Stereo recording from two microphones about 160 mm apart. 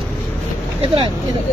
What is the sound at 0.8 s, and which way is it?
Speech, 35° right (ahead or behind).